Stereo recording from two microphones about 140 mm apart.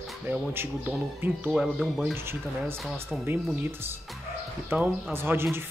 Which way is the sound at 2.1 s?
15° right (ahead or behind).